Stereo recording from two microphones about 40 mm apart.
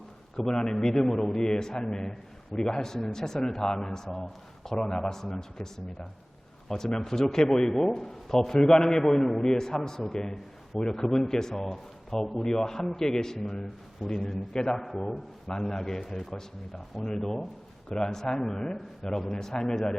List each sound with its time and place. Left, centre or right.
0.3 s a man's voice: centre
14.8 s a man's voice: centre